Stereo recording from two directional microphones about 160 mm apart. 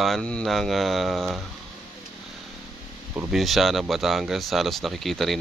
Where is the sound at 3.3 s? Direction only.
Centre (ahead or behind).